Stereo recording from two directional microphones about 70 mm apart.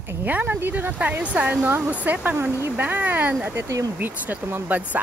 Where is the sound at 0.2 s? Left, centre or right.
Right.